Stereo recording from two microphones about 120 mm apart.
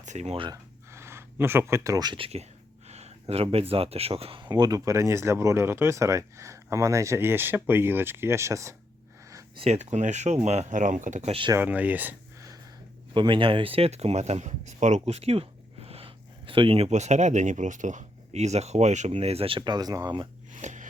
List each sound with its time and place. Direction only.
0.0 s speech: 75° right (ahead or behind)
0.5 s a sound: 20° right (ahead or behind)
2.1 s speech: 55° right (ahead or behind); by 8.7 s 25° right (ahead or behind)
9.6 s speech: 65° right (ahead or behind); by 11.3 s 90° right
11.3 s speech: 45° right (ahead or behind)
11.5 s speech: 15° right (ahead or behind)
13.1 s speech: 45° right (ahead or behind)
16.9 s speech: 80° right
19.1 s speech: 55° right (ahead or behind); by 20.2 s 35° right (ahead or behind)
20.5 s a sound: 90° right